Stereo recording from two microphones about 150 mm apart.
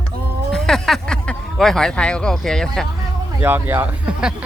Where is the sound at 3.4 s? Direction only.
15° right (ahead or behind).